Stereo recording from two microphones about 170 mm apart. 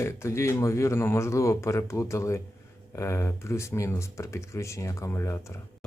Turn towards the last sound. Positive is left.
turn(degrees=15)  # may be behind; listen again after turning